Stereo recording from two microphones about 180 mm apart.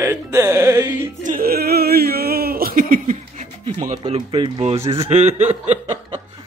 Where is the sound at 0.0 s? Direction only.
20° right (ahead or behind).